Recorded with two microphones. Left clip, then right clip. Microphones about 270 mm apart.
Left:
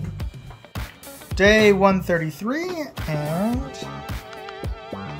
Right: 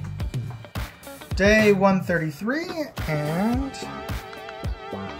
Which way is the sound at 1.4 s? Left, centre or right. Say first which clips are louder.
Left 3 dB; centre.